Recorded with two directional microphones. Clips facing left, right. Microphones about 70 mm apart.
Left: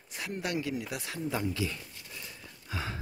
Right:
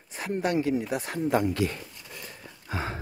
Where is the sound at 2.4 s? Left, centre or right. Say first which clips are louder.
Right 5 dB; right.